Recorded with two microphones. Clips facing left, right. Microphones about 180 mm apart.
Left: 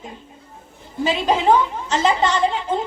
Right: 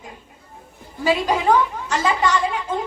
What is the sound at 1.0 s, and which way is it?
A woman's voice, 25° left (ahead or behind).